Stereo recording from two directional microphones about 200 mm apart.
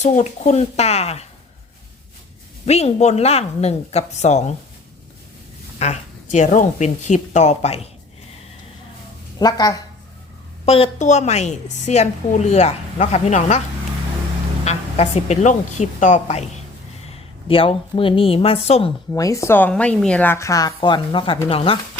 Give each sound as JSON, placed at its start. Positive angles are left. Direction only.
{"t": 0.0, "sound": "a woman's voice", "side_deg": 35}
{"t": 2.6, "sound": "a woman's voice", "side_deg": 35}
{"t": 5.8, "sound": "a woman's voice", "side_deg": 35}
{"t": 9.4, "sound": "speech", "side_deg": 20}
{"t": 10.7, "sound": "a woman's voice", "side_deg": 35}
{"t": 14.6, "sound": "a woman's voice", "side_deg": 35}
{"t": 17.5, "sound": "speech", "side_deg": 25}
{"t": 19.1, "sound": "a woman's voice", "side_deg": 15}